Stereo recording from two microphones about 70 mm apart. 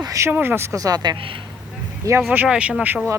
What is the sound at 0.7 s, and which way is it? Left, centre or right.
Speech, right.